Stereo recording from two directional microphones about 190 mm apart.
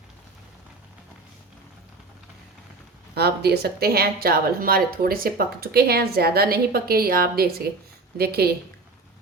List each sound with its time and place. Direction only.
3.2 s a woman's voice: 55° right (ahead or behind)